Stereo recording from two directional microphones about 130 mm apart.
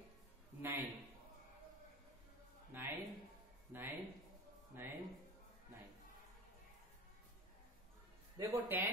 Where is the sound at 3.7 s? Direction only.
15° right (ahead or behind).